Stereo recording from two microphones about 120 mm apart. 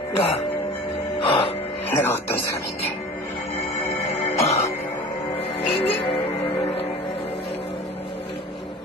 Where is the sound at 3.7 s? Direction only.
60° left (ahead or behind).